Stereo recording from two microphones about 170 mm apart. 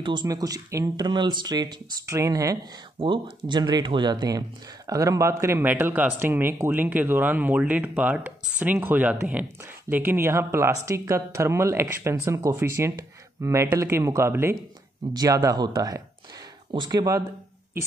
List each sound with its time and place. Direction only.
0.0 s speech: 25° right (ahead or behind)